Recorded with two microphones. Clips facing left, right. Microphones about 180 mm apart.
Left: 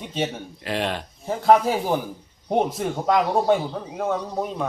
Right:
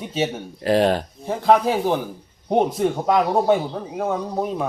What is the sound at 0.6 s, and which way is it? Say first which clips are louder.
Speech: right 9 dB; 40° right (ahead or behind).